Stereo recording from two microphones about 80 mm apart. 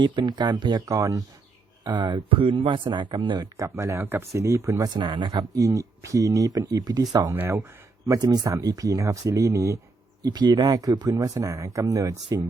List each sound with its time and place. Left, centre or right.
0.0 s speech: right
0.9 s speech: right
1.8 s speech: right
3.4 s speech: right
4.9 s speech: right
10.2 s speech: right